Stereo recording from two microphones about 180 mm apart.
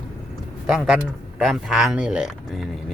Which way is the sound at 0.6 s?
5° right (ahead or behind).